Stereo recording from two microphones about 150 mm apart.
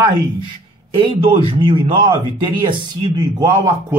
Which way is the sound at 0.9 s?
35° right (ahead or behind).